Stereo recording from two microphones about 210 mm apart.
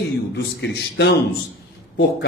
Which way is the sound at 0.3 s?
55° left (ahead or behind).